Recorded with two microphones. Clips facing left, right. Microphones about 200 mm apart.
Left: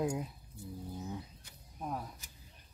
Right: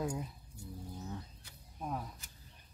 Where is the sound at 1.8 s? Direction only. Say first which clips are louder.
Even; 5° left (ahead or behind).